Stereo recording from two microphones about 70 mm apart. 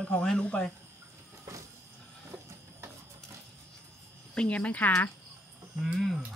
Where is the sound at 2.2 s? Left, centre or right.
Right.